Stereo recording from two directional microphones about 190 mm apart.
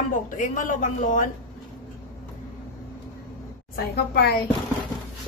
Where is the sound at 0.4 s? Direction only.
45° left (ahead or behind).